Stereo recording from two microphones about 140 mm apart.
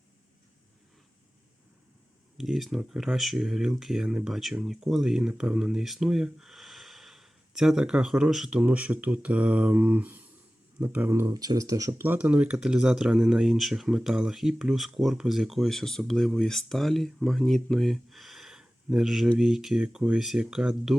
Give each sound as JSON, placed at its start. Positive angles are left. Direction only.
{"t": 2.4, "sound": "speech", "side_deg": 0}
{"t": 12.0, "sound": "speech", "side_deg": -10}